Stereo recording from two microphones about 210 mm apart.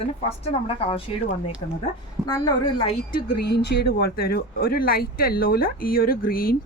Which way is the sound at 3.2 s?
50° left (ahead or behind).